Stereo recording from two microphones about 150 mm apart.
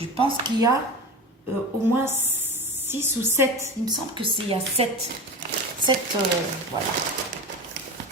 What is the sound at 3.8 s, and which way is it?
Speech, 30° right (ahead or behind).